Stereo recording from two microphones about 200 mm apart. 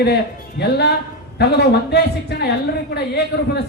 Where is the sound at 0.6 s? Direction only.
55° left (ahead or behind).